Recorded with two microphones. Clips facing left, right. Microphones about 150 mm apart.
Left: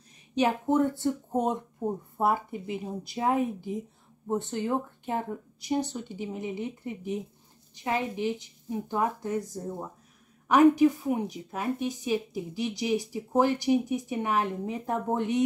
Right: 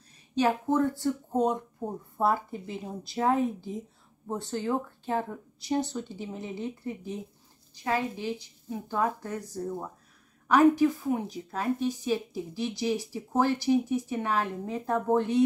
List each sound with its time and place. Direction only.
0.4 s a woman's voice: 20° left (ahead or behind)